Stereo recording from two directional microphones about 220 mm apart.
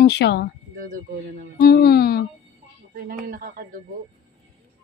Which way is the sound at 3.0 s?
40° right (ahead or behind).